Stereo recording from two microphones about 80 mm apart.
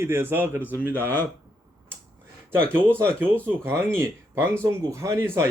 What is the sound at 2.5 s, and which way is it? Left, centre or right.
Speech, right.